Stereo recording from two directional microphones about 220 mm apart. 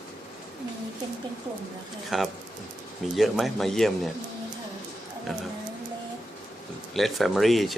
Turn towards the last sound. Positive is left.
turn(degrees=0)  # may be behind; listen again after turning